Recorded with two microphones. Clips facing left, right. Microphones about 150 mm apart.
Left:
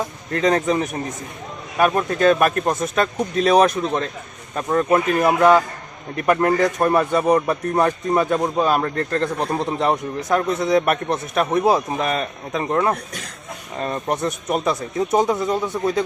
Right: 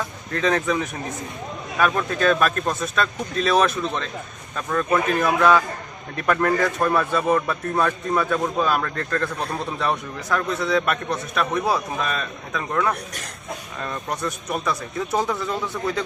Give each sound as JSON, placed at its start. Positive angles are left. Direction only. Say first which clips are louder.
{"t": 0.4, "sound": "speech", "louder": "left 3 dB", "side_deg": 35}
{"t": 1.8, "sound": "a man's voice", "louder": "left 4 dB", "side_deg": 20}
{"t": 4.5, "sound": "a man's voice", "louder": "left 4 dB", "side_deg": 25}